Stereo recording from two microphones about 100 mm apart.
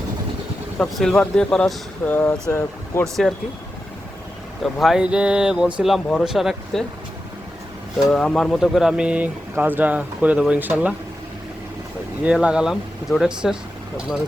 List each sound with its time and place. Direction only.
0.8 s speech: 5° left (ahead or behind)
2.0 s speech: 20° left (ahead or behind)
3.0 s speech: centre (ahead or behind)
4.6 s speech: centre (ahead or behind)
7.9 s speech: centre (ahead or behind); by 10.9 s 15° right (ahead or behind)
12.2 s speech: 10° right (ahead or behind)